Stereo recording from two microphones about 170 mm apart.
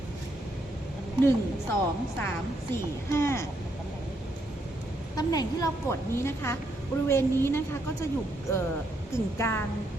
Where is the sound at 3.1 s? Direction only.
15° left (ahead or behind).